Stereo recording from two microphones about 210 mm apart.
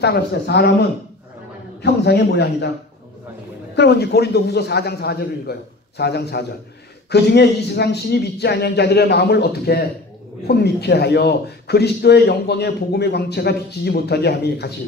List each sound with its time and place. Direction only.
0.0 s a man's voice: 50° left (ahead or behind)
1.8 s a man's voice: 55° left (ahead or behind)
3.7 s a man's voice: 50° left (ahead or behind)